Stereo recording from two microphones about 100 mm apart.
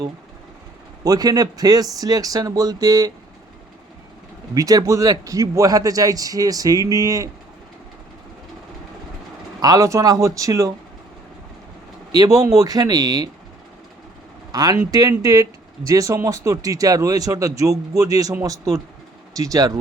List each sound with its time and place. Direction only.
1.0 s speech: 40° right (ahead or behind)
4.5 s speech: 35° right (ahead or behind)
9.6 s speech: 35° right (ahead or behind)
12.1 s speech: 35° right (ahead or behind)
14.5 s speech: 40° right (ahead or behind)